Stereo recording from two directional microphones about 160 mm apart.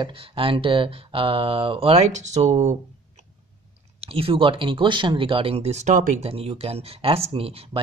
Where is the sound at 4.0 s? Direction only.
35° right (ahead or behind).